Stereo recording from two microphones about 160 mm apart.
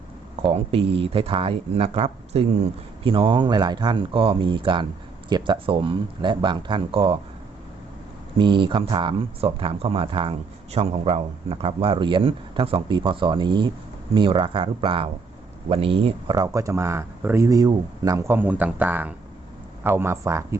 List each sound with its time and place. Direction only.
0.4 s speech: 35° right (ahead or behind)
8.4 s speech: 30° right (ahead or behind)
16.4 s speech: 20° right (ahead or behind)